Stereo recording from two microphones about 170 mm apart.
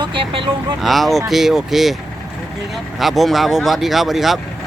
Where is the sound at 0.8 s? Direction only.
Centre (ahead or behind).